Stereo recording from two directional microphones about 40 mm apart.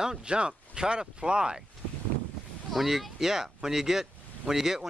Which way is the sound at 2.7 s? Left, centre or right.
Centre.